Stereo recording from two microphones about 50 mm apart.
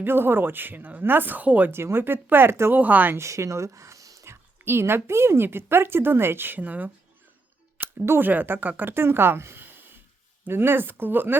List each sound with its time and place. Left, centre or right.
0.0 s speech: right
1.7 s speech: right
2.7 s speech: right
3.2 s speech: right
4.6 s speech: right
7.8 s a sound: right
8.2 s speech: right